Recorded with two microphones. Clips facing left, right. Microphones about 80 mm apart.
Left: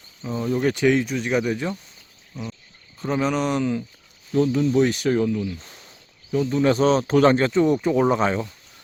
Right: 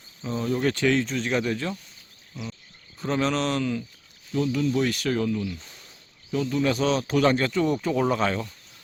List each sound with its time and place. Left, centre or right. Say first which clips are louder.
0.3 s speech: left 2 dB; centre
2.3 s a sound: left 3 dB; centre
3.0 s speech: left 2 dB; centre
4.3 s speech: left 5 dB; left; by 5.4 s centre
6.5 s speech: left 5 dB; left